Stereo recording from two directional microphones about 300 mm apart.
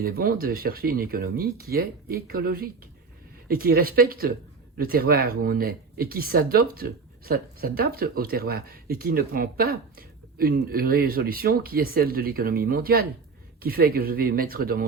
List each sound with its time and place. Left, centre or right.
0.0 s speech: right